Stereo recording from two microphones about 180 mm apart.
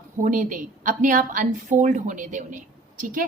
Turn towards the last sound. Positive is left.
turn(degrees=-50)  # may be behind; listen again after turning